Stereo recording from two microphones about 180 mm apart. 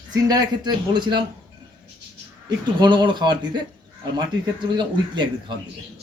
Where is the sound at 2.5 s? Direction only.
25° right (ahead or behind).